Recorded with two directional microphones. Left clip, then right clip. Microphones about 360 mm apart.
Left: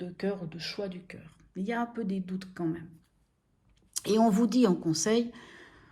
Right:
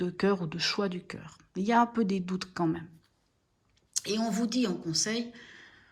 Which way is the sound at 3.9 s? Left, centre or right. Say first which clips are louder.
Left 6 dB; centre.